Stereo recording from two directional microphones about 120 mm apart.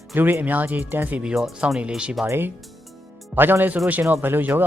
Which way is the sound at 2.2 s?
20° right (ahead or behind).